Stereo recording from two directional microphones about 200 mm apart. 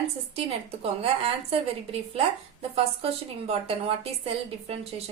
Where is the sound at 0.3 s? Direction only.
30° right (ahead or behind).